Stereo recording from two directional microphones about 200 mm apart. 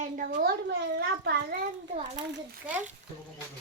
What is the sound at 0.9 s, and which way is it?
Speech, 55° right (ahead or behind).